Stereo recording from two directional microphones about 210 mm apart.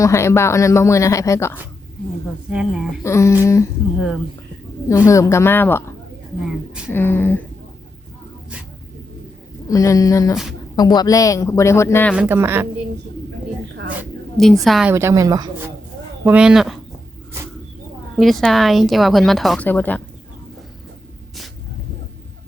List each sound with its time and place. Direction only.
0.0 s speech: 15° left (ahead or behind)
2.5 s a woman's voice: 5° right (ahead or behind)
3.0 s speech: 15° left (ahead or behind)
4.9 s speech: 15° left (ahead or behind)
6.9 s speech: 10° left (ahead or behind)
9.6 s speech: 15° left (ahead or behind)
12.1 s speech: 10° right (ahead or behind)
14.3 s a woman's voice: centre (ahead or behind)
14.9 s speech: 15° right (ahead or behind)
16.2 s a woman's voice: 5° right (ahead or behind)
18.2 s a woman's voice: centre (ahead or behind)